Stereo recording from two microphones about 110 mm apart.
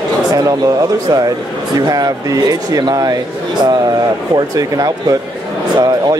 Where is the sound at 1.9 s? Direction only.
35° right (ahead or behind).